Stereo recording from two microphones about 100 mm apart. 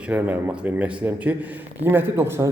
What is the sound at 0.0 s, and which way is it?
A man's voice, 15° right (ahead or behind).